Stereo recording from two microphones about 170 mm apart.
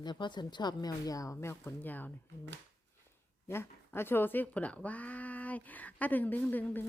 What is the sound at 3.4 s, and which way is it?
Speech, 15° left (ahead or behind).